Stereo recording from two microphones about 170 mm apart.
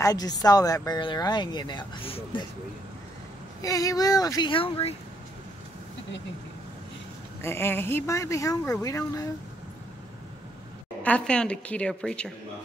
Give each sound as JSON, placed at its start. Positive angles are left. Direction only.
{"t": 0.0, "sound": "speech", "side_deg": 20}
{"t": 3.6, "sound": "speech", "side_deg": 20}
{"t": 7.4, "sound": "speech", "side_deg": 15}
{"t": 11.0, "sound": "a woman's voice", "side_deg": 5}